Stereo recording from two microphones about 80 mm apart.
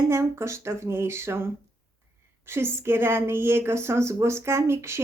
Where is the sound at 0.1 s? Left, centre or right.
Right.